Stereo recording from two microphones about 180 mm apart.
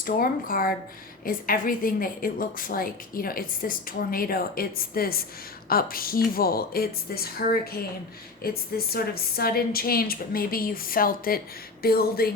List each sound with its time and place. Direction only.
0.0 s a woman's voice: 50° left (ahead or behind)